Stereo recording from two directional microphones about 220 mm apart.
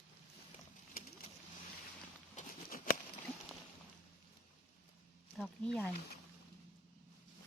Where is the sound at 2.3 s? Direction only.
35° left (ahead or behind).